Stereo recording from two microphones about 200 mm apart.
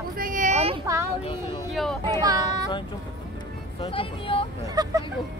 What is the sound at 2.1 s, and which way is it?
Speech, 20° right (ahead or behind).